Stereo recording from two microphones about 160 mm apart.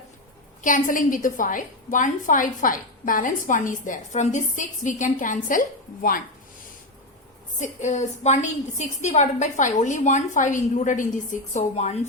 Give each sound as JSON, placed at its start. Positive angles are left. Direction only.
{"t": 0.6, "sound": "a woman's voice", "side_deg": 55}
{"t": 7.6, "sound": "a woman's voice", "side_deg": 50}